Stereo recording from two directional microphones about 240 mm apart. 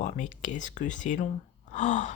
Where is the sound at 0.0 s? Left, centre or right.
Left.